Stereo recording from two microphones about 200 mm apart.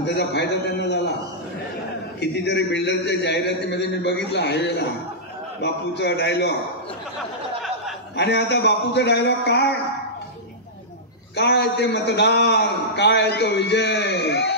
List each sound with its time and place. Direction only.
0.0 s a sound: 55° left (ahead or behind)
2.1 s a man's voice: 55° left (ahead or behind)
8.2 s a man's voice: 55° left (ahead or behind)
11.3 s a man's voice: 55° left (ahead or behind)